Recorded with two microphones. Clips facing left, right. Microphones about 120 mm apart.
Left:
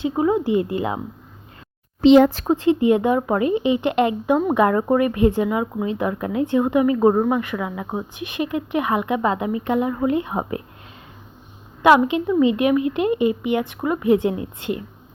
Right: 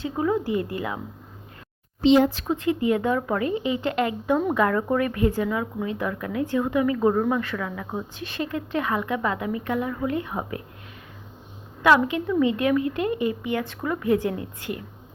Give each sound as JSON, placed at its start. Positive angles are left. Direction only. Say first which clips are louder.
{"t": 0.0, "sound": "speech", "louder": "left 5 dB", "side_deg": 20}
{"t": 2.0, "sound": "speech", "louder": "left 6 dB", "side_deg": 75}
{"t": 2.3, "sound": "speech", "louder": "left 6 dB", "side_deg": 45}
{"t": 2.6, "sound": "speech", "louder": "left 6 dB", "side_deg": 25}
{"t": 11.8, "sound": "speech", "louder": "left 4 dB", "side_deg": 20}